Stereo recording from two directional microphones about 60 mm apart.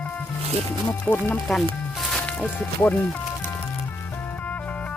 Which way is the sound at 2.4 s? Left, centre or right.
Left.